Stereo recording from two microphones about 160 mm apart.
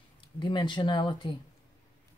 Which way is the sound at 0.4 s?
30° left (ahead or behind).